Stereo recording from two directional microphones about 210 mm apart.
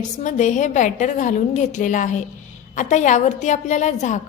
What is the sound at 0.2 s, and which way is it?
A woman's voice, 35° left (ahead or behind).